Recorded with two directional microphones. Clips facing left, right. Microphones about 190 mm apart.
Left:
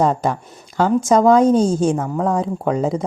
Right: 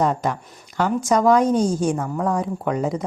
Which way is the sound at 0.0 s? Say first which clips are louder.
Left 3 dB; 30° left (ahead or behind).